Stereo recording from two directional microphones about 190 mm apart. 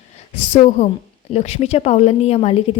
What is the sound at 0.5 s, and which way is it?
A woman's voice, 35° left (ahead or behind).